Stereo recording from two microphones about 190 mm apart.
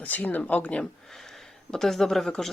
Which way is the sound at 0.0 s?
10° left (ahead or behind).